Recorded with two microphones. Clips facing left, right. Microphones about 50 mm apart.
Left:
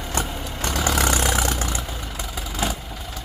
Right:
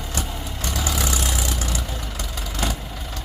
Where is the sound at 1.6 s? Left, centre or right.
Left.